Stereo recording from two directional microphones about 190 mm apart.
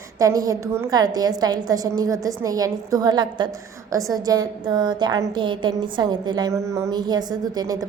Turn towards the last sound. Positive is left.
turn(degrees=-20)  # may be behind; listen again after turning